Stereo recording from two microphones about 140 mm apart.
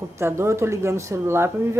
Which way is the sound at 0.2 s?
20° right (ahead or behind).